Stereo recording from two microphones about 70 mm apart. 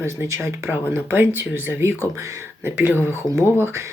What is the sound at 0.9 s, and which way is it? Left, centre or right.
Speech, right.